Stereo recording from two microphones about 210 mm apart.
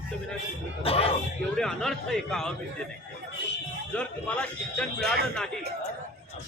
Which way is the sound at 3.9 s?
5° left (ahead or behind).